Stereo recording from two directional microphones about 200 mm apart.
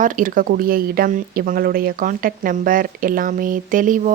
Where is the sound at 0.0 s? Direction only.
40° right (ahead or behind).